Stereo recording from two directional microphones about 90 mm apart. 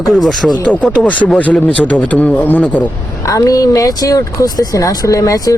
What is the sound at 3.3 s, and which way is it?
Speech, 40° left (ahead or behind).